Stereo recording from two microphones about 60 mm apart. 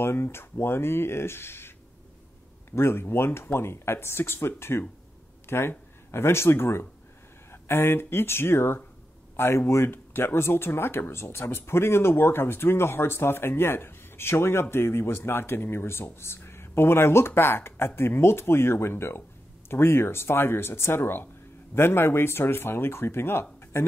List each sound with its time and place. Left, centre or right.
0.0 s speech: left
2.7 s speech: left